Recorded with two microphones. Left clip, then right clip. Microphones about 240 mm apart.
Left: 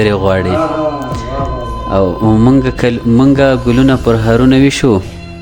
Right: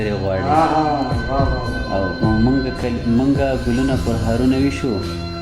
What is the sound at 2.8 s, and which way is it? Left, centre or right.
A man's voice, left.